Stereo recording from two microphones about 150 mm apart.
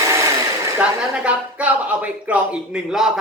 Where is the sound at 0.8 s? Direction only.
10° right (ahead or behind).